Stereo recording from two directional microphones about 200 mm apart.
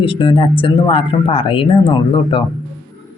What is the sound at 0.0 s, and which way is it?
Speech, 25° left (ahead or behind).